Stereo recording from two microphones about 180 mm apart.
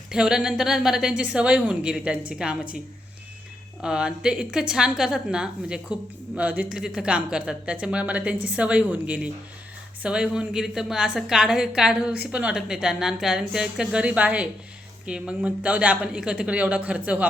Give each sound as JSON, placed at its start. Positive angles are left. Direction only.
{"t": 0.1, "sound": "a woman's voice", "side_deg": -5}
{"t": 3.8, "sound": "a woman's voice", "side_deg": -5}